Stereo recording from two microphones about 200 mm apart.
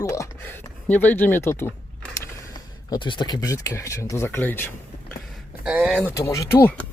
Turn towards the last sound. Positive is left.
turn(degrees=10)  # may be behind; listen again after turning